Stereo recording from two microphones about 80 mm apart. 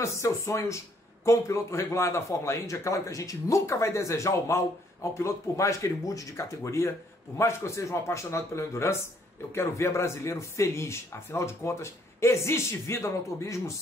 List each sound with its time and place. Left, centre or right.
0.0 s speech: left